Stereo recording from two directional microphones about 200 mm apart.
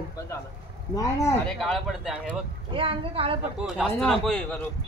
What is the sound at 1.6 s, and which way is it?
Speech, centre (ahead or behind).